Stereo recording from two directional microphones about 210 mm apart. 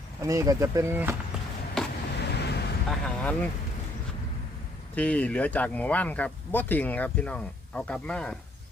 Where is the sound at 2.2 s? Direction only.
55° left (ahead or behind).